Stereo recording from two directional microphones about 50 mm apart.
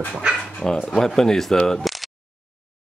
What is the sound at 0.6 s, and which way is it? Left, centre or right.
Speech, left.